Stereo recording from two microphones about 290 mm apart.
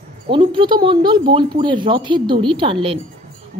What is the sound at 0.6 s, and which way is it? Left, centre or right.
Speech, centre.